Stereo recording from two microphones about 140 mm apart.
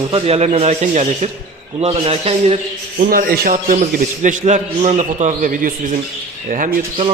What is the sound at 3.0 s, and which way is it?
Speech, 90° right.